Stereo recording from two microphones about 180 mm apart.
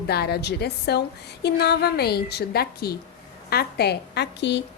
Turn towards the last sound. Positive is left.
turn(degrees=70)  # may be behind; listen again after turning